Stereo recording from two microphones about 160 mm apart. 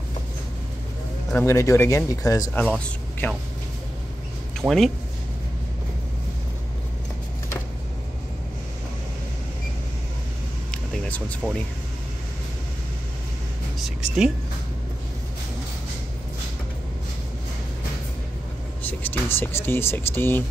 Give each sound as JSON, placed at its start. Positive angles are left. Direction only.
{"t": 1.3, "sound": "speech", "side_deg": 15}
{"t": 3.2, "sound": "speech", "side_deg": 10}
{"t": 4.6, "sound": "speech", "side_deg": 0}
{"t": 10.7, "sound": "vehicle", "side_deg": 10}
{"t": 13.7, "sound": "speech", "side_deg": -5}
{"t": 18.9, "sound": "speech", "side_deg": 15}